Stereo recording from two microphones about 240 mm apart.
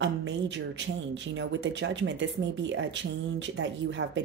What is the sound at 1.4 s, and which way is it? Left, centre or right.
A woman's voice, right.